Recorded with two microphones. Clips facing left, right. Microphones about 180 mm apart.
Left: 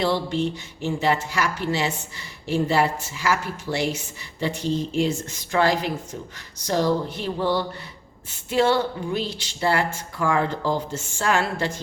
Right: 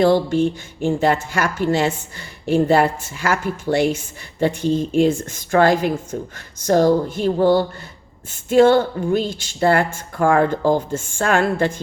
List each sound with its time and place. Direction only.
0.0 s speech: 50° right (ahead or behind)